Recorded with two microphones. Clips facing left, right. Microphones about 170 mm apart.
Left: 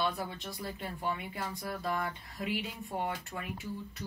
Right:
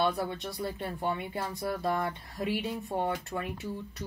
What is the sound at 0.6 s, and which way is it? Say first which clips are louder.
Speech: right 5 dB; 30° right (ahead or behind).